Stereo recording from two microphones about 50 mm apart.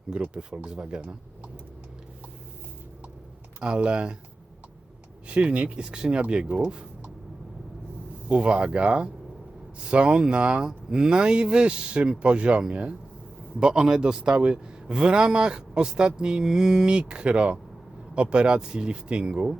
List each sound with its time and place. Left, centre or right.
0.1 s speech: centre
3.6 s speech: right
5.3 s speech: right
8.3 s a man's voice: right